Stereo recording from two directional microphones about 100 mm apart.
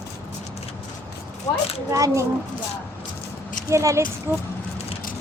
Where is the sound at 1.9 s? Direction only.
30° right (ahead or behind).